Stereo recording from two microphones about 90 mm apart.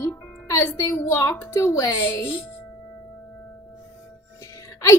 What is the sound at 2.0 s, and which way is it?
Speech, 25° left (ahead or behind).